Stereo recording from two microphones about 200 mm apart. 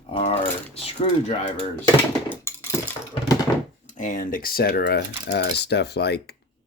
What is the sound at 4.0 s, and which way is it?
Speech, 40° left (ahead or behind).